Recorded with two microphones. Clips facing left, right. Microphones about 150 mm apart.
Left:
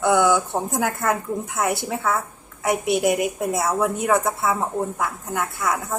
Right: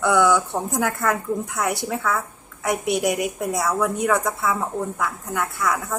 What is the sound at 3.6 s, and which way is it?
Speech, 25° left (ahead or behind).